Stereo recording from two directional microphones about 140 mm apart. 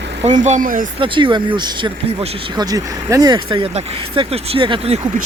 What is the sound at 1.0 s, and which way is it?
Speech, 35° right (ahead or behind).